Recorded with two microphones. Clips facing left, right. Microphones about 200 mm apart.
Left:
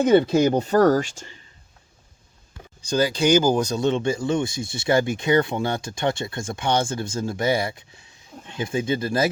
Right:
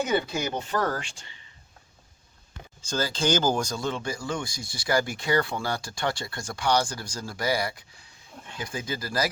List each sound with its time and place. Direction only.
0.1 s speech: 30° left (ahead or behind)
2.8 s speech: 15° left (ahead or behind)